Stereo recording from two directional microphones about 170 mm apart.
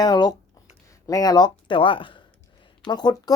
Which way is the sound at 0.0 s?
25° left (ahead or behind).